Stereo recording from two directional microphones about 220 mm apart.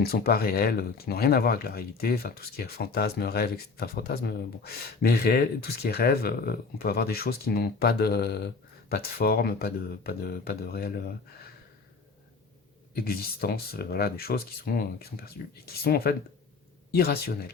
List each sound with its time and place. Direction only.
0.0 s speech: 45° left (ahead or behind)
12.9 s speech: 45° left (ahead or behind)